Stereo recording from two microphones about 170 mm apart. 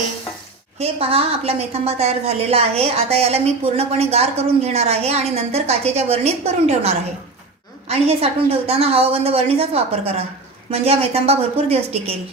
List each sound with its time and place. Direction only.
0.8 s a woman's voice: 35° right (ahead or behind)